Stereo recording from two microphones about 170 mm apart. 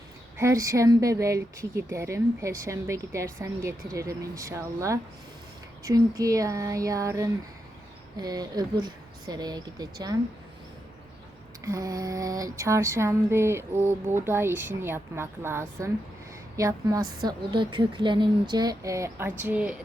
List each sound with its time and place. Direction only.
0.3 s female singing: 15° right (ahead or behind)
5.8 s a woman's voice: 20° right (ahead or behind)
11.6 s female singing: 20° right (ahead or behind)
16.6 s a woman's voice: 20° right (ahead or behind)